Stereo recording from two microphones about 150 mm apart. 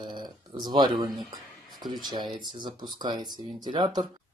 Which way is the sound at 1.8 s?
30° right (ahead or behind).